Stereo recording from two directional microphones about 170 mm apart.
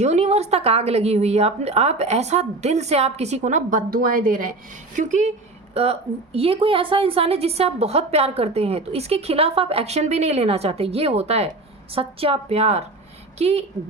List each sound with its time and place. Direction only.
0.0 s a woman's voice: 40° right (ahead or behind)
5.7 s a woman's voice: 35° right (ahead or behind)